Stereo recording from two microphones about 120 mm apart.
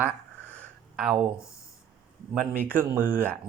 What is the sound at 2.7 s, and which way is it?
Speech, 15° right (ahead or behind).